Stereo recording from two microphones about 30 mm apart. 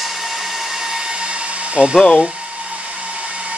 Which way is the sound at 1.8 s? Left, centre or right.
Right.